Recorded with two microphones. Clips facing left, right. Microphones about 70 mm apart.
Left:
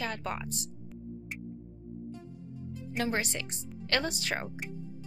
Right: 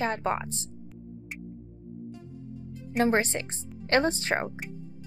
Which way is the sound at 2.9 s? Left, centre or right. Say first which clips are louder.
Right 8 dB; right.